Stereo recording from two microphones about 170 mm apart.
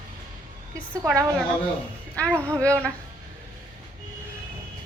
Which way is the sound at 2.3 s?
15° right (ahead or behind).